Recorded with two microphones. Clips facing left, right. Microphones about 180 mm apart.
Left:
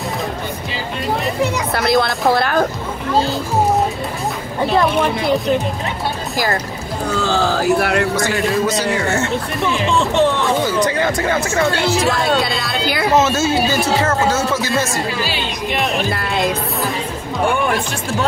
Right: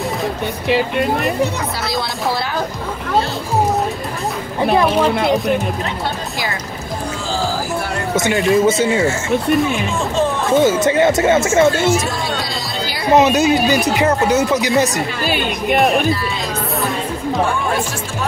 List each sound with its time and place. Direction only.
0.7 s speech: 65° right (ahead or behind)
1.8 s speech: 55° left (ahead or behind)
4.6 s speech: 55° right (ahead or behind)
7.2 s speech: 70° left (ahead or behind)
8.1 s speech: 20° right (ahead or behind)
9.0 s speech: 60° left (ahead or behind)
10.5 s speech: 20° right (ahead or behind)
11.7 s speech: 65° left (ahead or behind)
13.1 s speech: 15° right (ahead or behind)
15.2 s speech: 50° right (ahead or behind)
16.1 s speech: 60° left (ahead or behind)